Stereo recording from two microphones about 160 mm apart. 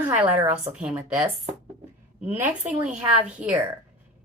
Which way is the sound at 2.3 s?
10° right (ahead or behind).